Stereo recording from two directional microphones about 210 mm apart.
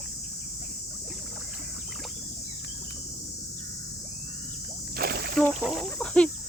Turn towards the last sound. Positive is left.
turn(degrees=5)  # may be behind; listen again after turning